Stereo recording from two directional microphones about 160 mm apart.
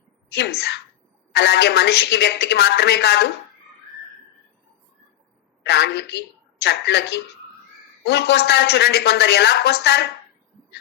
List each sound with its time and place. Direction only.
0.3 s a woman's voice: 90° left
5.6 s a woman's voice: 90° left